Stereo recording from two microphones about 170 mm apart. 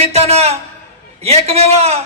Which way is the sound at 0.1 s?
40° right (ahead or behind).